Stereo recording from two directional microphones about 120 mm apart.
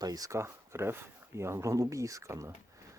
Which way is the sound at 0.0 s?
30° right (ahead or behind).